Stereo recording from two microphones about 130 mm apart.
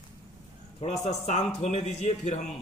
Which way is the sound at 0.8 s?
60° left (ahead or behind).